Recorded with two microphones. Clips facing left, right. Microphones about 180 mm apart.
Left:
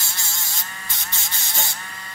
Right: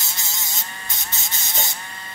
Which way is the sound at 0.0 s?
20° right (ahead or behind).